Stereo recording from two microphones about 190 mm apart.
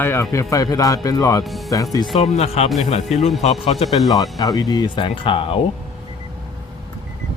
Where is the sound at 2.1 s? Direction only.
30° left (ahead or behind).